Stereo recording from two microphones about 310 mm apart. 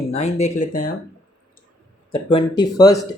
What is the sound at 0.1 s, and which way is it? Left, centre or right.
Speech, left.